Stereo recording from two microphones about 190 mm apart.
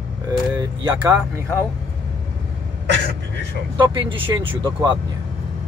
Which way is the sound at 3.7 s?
25° right (ahead or behind).